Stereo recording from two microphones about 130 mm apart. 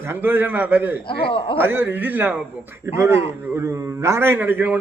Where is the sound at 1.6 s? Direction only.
15° right (ahead or behind).